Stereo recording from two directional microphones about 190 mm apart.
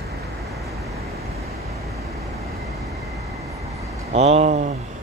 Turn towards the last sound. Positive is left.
turn(degrees=-35)  # may be behind; listen again after turning